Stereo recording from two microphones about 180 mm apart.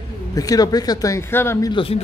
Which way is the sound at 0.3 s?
20° left (ahead or behind).